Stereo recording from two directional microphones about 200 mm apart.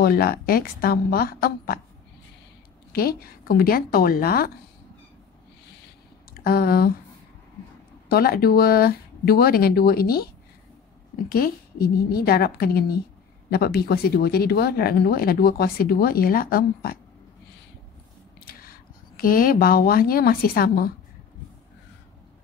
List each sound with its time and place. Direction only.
0.0 s speech: 50° left (ahead or behind)
2.9 s speech: 50° left (ahead or behind)
6.3 s speech: 50° left (ahead or behind)
8.1 s speech: 50° left (ahead or behind)
18.4 s speech: 45° left (ahead or behind)